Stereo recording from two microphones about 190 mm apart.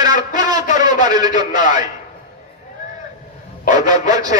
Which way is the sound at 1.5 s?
40° left (ahead or behind).